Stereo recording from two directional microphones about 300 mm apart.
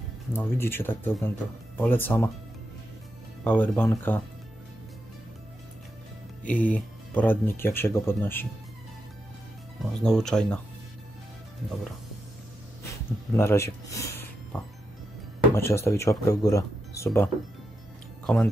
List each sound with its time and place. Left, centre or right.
0.3 s speech: centre
3.4 s speech: centre
6.4 s speech: centre
9.9 s speech: centre
13.4 s music: centre
15.5 s speech: centre